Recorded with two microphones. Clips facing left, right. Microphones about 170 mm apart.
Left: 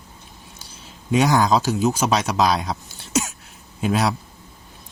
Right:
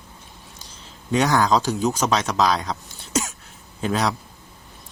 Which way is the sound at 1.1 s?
10° left (ahead or behind).